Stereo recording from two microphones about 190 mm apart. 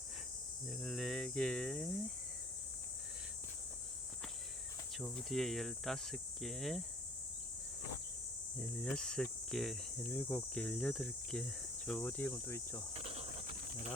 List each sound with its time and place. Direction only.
0.7 s speech: centre (ahead or behind)
4.9 s cricket: centre (ahead or behind)
8.5 s cricket: 5° left (ahead or behind)
12.9 s speech: 30° right (ahead or behind)